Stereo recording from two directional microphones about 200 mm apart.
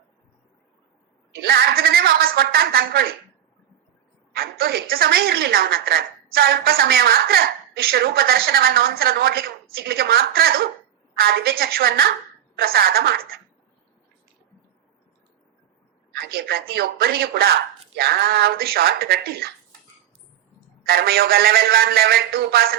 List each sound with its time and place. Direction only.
1.4 s a woman's voice: 50° right (ahead or behind)
4.4 s a woman's voice: 50° right (ahead or behind)
16.1 s a woman's voice: 50° right (ahead or behind)
20.8 s a woman's voice: 50° right (ahead or behind)